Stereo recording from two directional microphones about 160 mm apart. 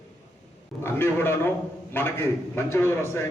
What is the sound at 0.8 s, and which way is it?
A man's voice, 15° left (ahead or behind).